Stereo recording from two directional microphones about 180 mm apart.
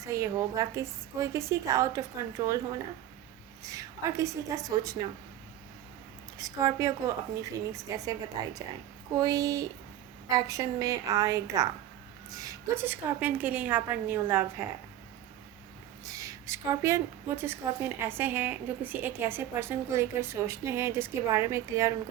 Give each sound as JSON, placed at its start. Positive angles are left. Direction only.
{"t": 0.0, "sound": "a woman's voice", "side_deg": -20}
{"t": 3.6, "sound": "a woman's voice", "side_deg": -20}
{"t": 6.4, "sound": "a woman's voice", "side_deg": -20}
{"t": 16.0, "sound": "a woman's voice", "side_deg": -20}